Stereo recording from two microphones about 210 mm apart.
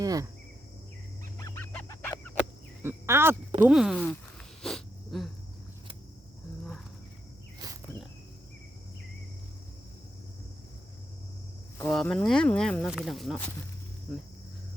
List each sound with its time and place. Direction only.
0.0 s insect: 15° right (ahead or behind)
1.4 s goose: 15° left (ahead or behind)
1.7 s a sound: 10° left (ahead or behind)
2.8 s speech: 10° right (ahead or behind)
3.6 s a sound: 5° right (ahead or behind)
7.6 s cricket: 15° right (ahead or behind)
11.8 s speech: 5° left (ahead or behind)